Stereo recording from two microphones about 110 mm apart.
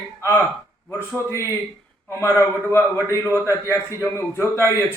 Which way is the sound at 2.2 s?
25° left (ahead or behind).